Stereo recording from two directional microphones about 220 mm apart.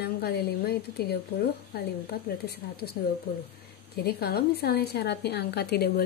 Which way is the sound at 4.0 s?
45° left (ahead or behind).